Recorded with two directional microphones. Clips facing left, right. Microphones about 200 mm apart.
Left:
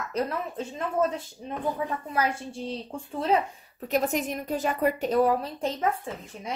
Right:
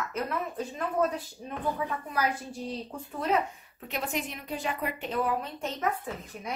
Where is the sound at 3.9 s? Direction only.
40° left (ahead or behind); by 6.5 s 25° left (ahead or behind).